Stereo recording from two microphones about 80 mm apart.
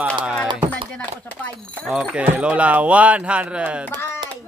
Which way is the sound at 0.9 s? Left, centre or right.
Centre.